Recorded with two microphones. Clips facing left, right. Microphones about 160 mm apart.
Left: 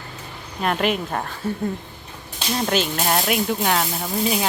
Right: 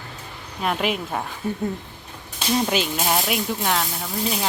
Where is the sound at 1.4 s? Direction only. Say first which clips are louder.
Left 1 dB; 15° right (ahead or behind).